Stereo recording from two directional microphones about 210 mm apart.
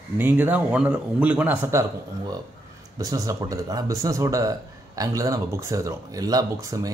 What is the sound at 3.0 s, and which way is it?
Speech, 15° right (ahead or behind).